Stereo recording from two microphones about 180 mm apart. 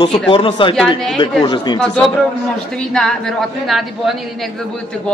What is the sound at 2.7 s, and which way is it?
A man's voice, centre (ahead or behind).